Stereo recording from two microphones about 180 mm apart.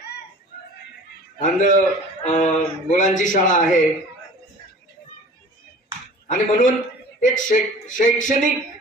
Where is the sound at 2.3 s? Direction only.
40° left (ahead or behind).